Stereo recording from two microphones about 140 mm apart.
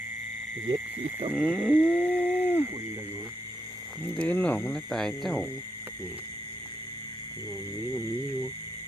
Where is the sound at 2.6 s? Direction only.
25° right (ahead or behind).